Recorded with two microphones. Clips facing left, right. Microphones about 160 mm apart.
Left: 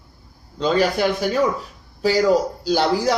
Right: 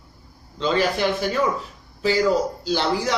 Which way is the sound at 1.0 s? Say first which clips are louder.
Left 2 dB; 40° left (ahead or behind).